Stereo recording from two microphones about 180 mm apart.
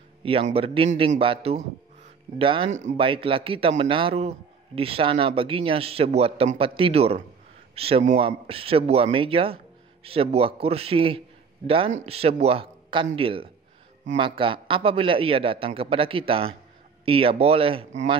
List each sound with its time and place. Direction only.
0.2 s a man's voice: 30° right (ahead or behind)
2.7 s a man's voice: 40° right (ahead or behind)